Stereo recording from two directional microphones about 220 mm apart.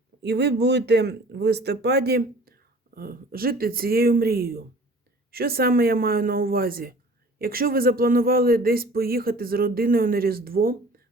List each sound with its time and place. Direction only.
0.2 s speech: 50° right (ahead or behind)